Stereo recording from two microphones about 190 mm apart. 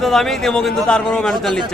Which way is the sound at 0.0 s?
Centre (ahead or behind).